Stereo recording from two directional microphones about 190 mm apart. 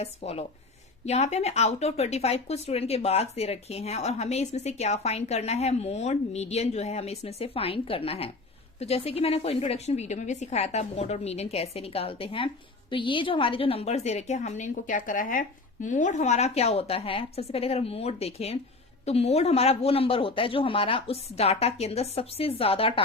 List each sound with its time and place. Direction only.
0.0 s speech: 35° left (ahead or behind)